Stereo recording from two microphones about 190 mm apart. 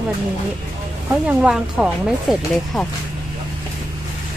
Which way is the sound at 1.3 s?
5° right (ahead or behind).